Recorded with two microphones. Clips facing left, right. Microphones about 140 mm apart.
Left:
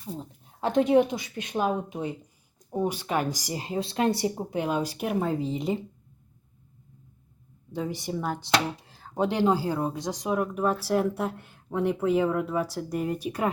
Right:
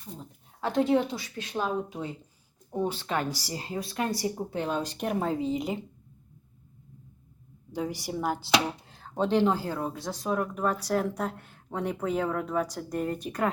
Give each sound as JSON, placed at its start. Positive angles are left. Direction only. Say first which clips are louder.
{"t": 0.6, "sound": "speech", "louder": "left 4 dB", "side_deg": 20}
{"t": 7.7, "sound": "speech", "louder": "left 1 dB", "side_deg": 0}
{"t": 9.1, "sound": "speech", "louder": "left 1 dB", "side_deg": 10}